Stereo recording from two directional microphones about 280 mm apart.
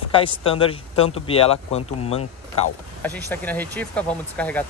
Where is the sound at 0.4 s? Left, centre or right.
Centre.